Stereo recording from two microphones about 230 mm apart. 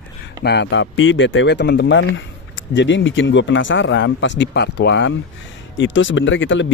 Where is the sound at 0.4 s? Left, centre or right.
Left.